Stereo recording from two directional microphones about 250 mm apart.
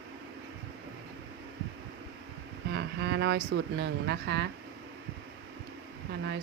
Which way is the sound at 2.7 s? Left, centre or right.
Right.